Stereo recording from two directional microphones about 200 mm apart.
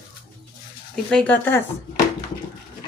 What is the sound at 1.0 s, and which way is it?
Speech, 5° left (ahead or behind).